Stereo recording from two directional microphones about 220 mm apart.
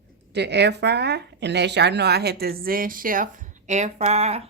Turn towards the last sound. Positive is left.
turn(degrees=-30)  # may be behind; listen again after turning